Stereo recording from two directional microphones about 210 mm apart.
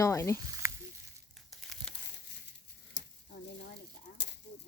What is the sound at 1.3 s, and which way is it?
Crumpling, centre (ahead or behind).